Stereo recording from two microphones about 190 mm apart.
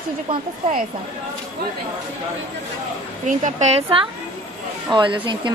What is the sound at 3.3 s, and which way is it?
Speech, 40° right (ahead or behind).